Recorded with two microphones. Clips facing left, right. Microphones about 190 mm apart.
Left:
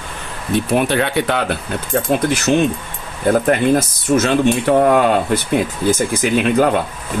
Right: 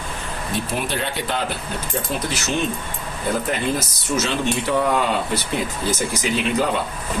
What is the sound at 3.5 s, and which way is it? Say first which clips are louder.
Speech: left 9 dB; 55° left (ahead or behind).